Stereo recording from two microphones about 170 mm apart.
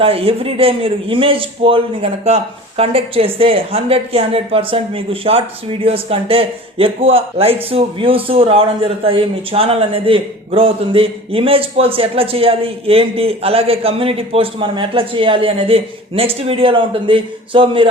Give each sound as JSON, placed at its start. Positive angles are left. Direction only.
{"t": 0.0, "sound": "a man's voice", "side_deg": -35}